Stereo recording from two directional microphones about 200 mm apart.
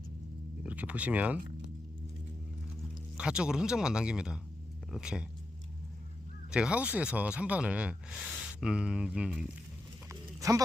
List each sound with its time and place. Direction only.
0.6 s speech: 5° right (ahead or behind)
3.2 s speech: 5° right (ahead or behind)
6.5 s speech: 5° right (ahead or behind)
10.1 s a sound: 15° right (ahead or behind)